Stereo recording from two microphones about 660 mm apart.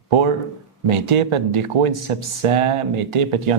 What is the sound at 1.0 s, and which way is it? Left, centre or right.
Speech, right.